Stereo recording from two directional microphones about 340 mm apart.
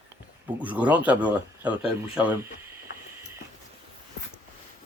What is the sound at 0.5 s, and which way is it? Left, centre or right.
Speech, centre.